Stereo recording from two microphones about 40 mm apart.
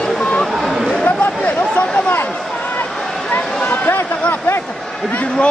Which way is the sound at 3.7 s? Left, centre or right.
Left.